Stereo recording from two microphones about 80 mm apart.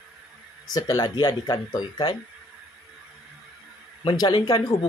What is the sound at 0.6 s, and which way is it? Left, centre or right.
Speech, left.